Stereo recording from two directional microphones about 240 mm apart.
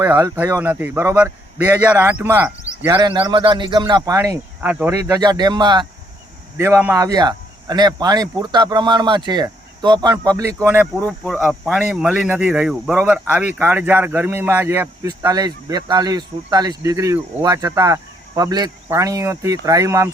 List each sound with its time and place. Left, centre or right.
0.0 s speech: centre
11.0 s speech: centre